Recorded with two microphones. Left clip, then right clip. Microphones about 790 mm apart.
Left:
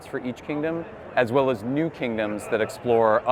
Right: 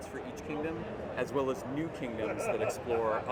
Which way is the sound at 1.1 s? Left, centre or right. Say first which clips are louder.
Left 12 dB; left.